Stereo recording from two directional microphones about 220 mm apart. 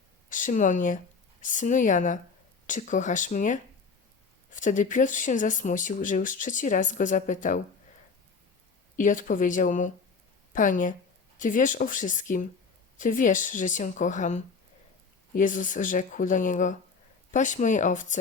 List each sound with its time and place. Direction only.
0.3 s speech: 35° left (ahead or behind)
9.0 s speech: 35° left (ahead or behind)